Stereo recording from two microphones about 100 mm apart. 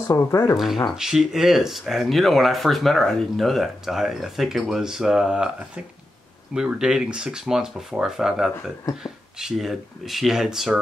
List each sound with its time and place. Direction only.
0.1 s speech: 30° left (ahead or behind)
0.9 s speech: 5° right (ahead or behind)